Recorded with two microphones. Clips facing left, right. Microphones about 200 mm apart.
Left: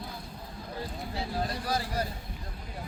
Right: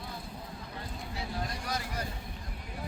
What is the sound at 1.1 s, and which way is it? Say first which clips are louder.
Vehicle: left 4 dB; 30° left (ahead or behind).